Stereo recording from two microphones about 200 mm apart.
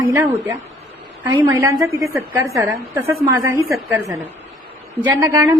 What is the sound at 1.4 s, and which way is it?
A woman's voice, 20° right (ahead or behind).